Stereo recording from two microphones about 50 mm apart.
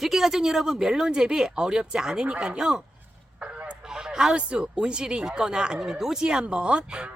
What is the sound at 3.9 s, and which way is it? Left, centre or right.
Speech, centre.